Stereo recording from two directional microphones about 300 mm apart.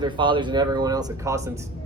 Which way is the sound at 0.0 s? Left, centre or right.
Centre.